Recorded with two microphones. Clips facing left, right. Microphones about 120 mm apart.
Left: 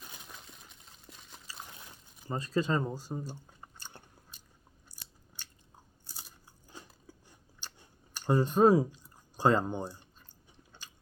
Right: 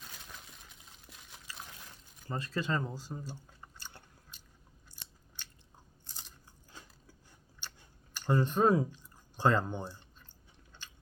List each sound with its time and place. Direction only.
0.3 s liquid: centre (ahead or behind)
2.2 s speech: 15° left (ahead or behind)
3.2 s chewing: 20° left (ahead or behind)
6.1 s biting: 10° left (ahead or behind)